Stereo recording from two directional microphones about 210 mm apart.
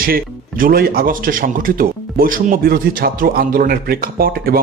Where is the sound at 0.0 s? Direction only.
45° right (ahead or behind).